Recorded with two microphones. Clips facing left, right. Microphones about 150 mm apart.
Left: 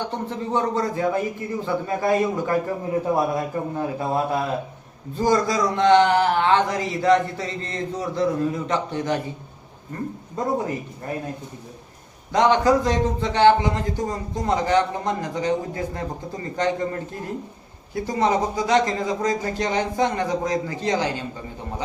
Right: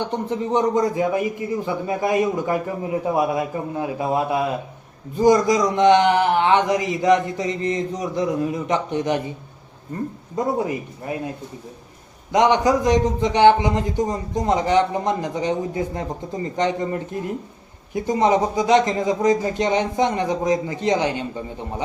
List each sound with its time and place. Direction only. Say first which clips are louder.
0.0 s speech: right 4 dB; 15° right (ahead or behind)
12.3 s a man's voice: right 1 dB; 15° right (ahead or behind)